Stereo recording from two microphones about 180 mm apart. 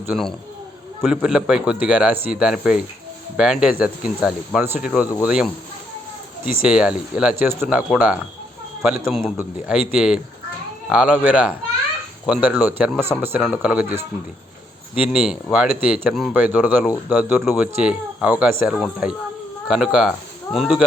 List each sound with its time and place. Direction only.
1.0 s speech: 5° right (ahead or behind)
6.7 s speech: 5° right (ahead or behind)
15.0 s speech: 5° right (ahead or behind)